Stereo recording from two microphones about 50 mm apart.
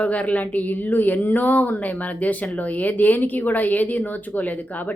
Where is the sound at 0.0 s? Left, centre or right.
Left.